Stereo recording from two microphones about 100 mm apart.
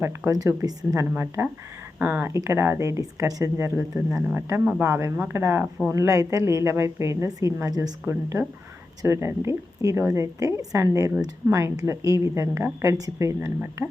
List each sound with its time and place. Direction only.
0.0 s speech: 30° right (ahead or behind)
1.1 s a woman's voice: 25° right (ahead or behind)